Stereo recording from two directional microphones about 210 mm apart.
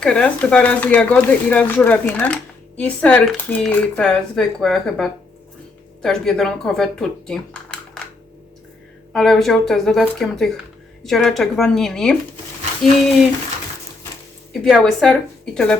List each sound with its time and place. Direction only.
0.0 s speech: 5° left (ahead or behind)
9.1 s speech: centre (ahead or behind)
14.5 s speech: centre (ahead or behind)